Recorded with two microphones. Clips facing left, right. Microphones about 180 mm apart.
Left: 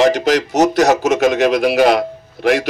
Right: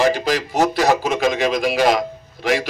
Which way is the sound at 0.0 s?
70° left (ahead or behind).